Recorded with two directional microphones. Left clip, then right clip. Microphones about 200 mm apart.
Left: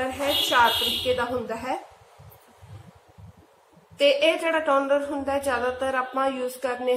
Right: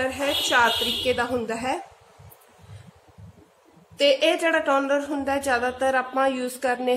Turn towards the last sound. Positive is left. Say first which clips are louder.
# right 2 dB
turn(degrees=-35)  # may be behind; listen again after turning